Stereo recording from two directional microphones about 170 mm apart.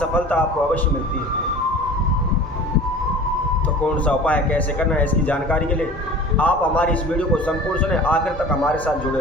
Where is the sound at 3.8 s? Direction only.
5° left (ahead or behind).